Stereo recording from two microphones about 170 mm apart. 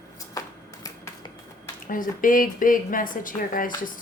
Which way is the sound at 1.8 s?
55° left (ahead or behind).